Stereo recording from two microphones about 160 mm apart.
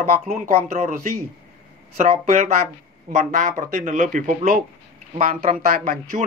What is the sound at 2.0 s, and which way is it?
Speech, 50° right (ahead or behind).